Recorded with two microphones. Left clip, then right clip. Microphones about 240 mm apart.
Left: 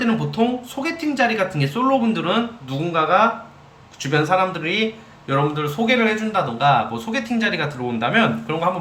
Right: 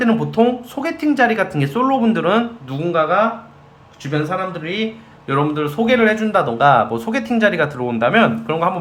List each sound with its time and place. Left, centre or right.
0.0 s speech: centre